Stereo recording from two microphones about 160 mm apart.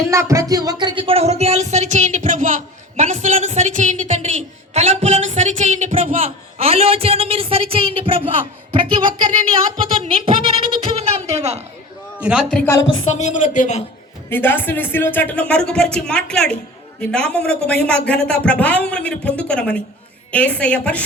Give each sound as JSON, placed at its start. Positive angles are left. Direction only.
{"t": 0.1, "sound": "speech", "side_deg": -20}
{"t": 9.9, "sound": "a sound", "side_deg": -35}
{"t": 12.2, "sound": "a man's voice", "side_deg": -5}
{"t": 12.5, "sound": "speech", "side_deg": 15}
{"t": 13.1, "sound": "speech", "side_deg": 50}
{"t": 14.3, "sound": "speech", "side_deg": 10}